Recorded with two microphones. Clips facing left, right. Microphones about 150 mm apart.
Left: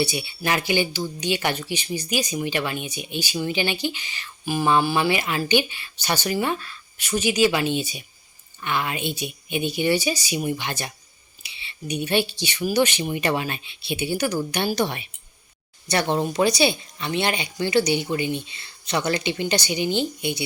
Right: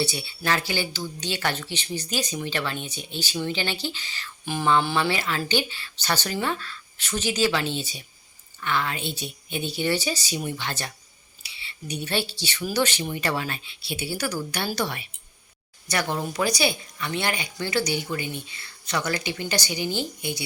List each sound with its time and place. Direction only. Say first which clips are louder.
0.0 s speech: left 3 dB; 15° left (ahead or behind)